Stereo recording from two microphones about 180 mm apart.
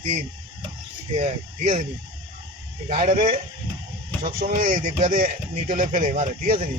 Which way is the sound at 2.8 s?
40° right (ahead or behind).